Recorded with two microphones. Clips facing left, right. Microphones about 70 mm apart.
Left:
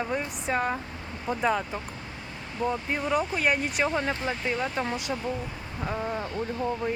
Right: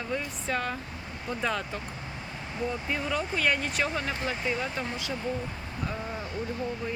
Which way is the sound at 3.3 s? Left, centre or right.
Centre.